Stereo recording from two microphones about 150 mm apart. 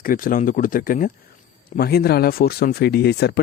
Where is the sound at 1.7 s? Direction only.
90° left.